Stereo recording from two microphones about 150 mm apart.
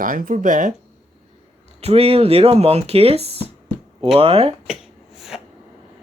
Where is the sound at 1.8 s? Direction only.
40° right (ahead or behind).